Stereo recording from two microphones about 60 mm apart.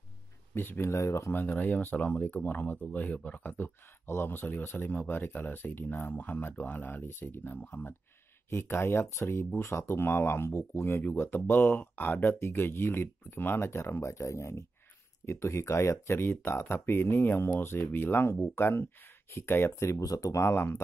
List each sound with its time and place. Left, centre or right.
0.7 s speech: left
1.3 s speech: left
7.1 s speech: left
8.5 s speech: left
20.0 s speech: left
20.3 s speech: left